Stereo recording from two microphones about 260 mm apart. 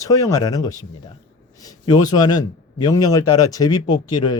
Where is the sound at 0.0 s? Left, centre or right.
Centre.